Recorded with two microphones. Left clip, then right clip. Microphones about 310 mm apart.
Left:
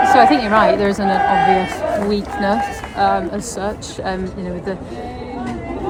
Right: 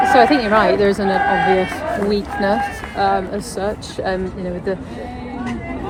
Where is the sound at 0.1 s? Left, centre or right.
Centre.